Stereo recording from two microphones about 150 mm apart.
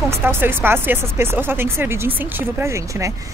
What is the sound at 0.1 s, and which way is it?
Speech, 15° right (ahead or behind).